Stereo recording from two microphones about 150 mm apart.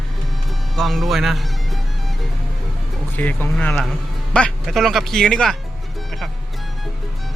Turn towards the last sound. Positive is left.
turn(degrees=5)  # may be behind; listen again after turning